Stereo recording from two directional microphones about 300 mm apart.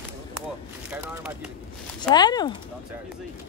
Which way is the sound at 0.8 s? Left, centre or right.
Centre.